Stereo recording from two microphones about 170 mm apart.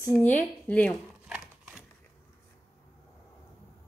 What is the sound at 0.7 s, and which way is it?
Speech, 10° left (ahead or behind).